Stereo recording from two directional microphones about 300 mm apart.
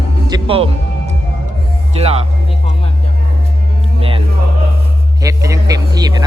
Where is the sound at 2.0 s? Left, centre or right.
Centre.